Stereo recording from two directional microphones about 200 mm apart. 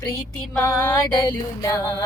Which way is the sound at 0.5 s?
10° left (ahead or behind).